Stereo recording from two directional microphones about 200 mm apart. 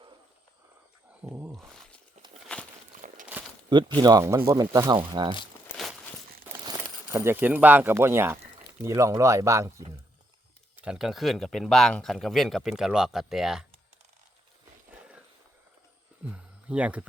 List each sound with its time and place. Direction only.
1.2 s a sound: 10° right (ahead or behind)
2.5 s walk: 5° left (ahead or behind)
2.9 s a sound: 40° right (ahead or behind)
3.7 s speech: 25° right (ahead or behind)
6.5 s speech: 15° right (ahead or behind)
10.8 s speech: 5° right (ahead or behind)
16.2 s speech: 5° right (ahead or behind)